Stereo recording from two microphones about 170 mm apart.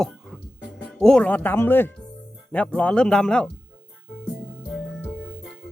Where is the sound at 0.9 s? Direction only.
5° left (ahead or behind).